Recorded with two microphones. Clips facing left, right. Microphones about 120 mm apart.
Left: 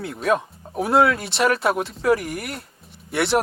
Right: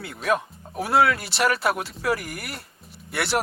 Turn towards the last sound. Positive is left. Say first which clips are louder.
# left 5 dB
turn(degrees=0)  # may be behind; listen again after turning